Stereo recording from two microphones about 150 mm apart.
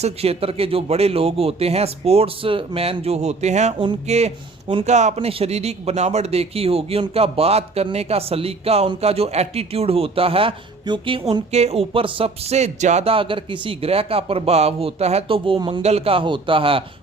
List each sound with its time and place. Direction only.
0.0 s speech: 40° right (ahead or behind)
15.8 s speech: 45° right (ahead or behind)